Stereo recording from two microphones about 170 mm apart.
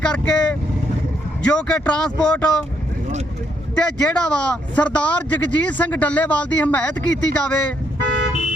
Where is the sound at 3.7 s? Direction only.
5° left (ahead or behind).